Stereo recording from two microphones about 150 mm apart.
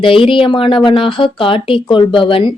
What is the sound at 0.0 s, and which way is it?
Speech, 35° left (ahead or behind).